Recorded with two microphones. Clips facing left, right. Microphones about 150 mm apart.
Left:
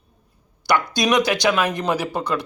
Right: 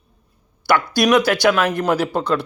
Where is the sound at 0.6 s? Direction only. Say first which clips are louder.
Right 3 dB; 20° left (ahead or behind).